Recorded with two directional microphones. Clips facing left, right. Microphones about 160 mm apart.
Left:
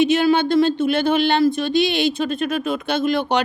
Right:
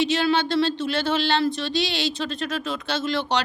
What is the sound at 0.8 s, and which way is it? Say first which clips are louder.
Speech: left 6 dB; 55° left (ahead or behind).